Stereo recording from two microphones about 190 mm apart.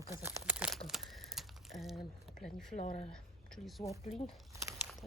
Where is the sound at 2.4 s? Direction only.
Centre (ahead or behind).